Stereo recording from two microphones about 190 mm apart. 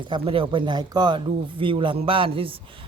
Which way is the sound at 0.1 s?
25° right (ahead or behind).